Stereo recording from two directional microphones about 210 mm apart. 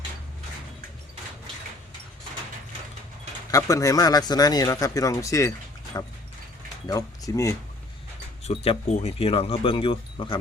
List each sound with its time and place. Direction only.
3.5 s speech: 15° left (ahead or behind)
8.4 s speech: 30° left (ahead or behind)